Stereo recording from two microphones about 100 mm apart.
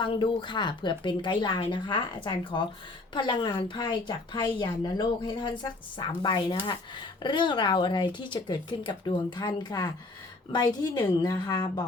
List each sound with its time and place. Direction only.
0.0 s speech: 50° left (ahead or behind)